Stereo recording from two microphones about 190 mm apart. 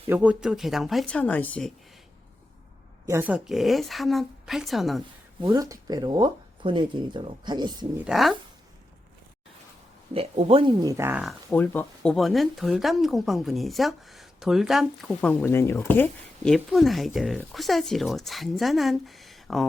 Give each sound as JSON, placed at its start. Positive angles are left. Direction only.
{"t": 0.1, "sound": "speech", "side_deg": -5}
{"t": 3.1, "sound": "speech", "side_deg": -10}
{"t": 5.4, "sound": "speech", "side_deg": -20}
{"t": 7.9, "sound": "speech", "side_deg": 0}
{"t": 10.2, "sound": "speech", "side_deg": -30}
{"t": 11.5, "sound": "speech", "side_deg": 10}